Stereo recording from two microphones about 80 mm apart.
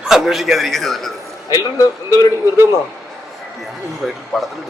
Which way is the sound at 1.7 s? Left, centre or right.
Left.